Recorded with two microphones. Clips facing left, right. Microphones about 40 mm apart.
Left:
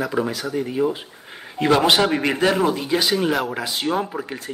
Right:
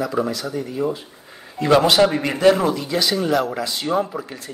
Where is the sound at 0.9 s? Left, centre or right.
Left.